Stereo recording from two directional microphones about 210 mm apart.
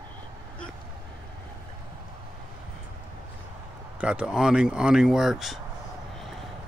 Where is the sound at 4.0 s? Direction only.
5° right (ahead or behind).